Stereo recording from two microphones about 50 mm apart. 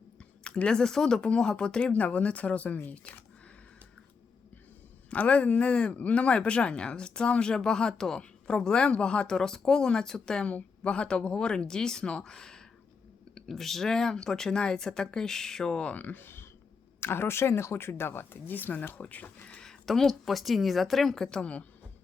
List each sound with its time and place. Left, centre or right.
0.4 s speech: centre
1.9 s speech: left
5.1 s speech: left; by 15.8 s centre
15.8 s speech: left
16.2 s a sound: left
17.0 s speech: left
19.5 s speech: centre
21.2 s speech: centre